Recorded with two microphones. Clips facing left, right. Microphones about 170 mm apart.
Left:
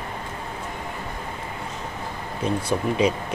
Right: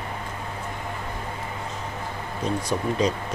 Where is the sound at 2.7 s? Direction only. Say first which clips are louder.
Left 2 dB; 10° left (ahead or behind).